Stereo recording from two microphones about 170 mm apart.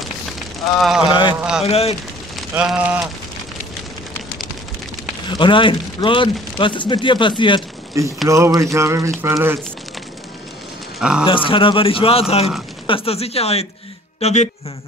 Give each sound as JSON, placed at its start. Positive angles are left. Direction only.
{"t": 1.0, "sound": "speech", "side_deg": 30}
{"t": 1.3, "sound": "speech", "side_deg": -5}
{"t": 1.7, "sound": "a man's voice", "side_deg": 35}
{"t": 2.5, "sound": "speech", "side_deg": -5}
{"t": 5.3, "sound": "speech", "side_deg": 30}
{"t": 8.0, "sound": "speech", "side_deg": -20}
{"t": 11.0, "sound": "speech", "side_deg": -5}
{"t": 11.2, "sound": "a man's voice", "side_deg": 30}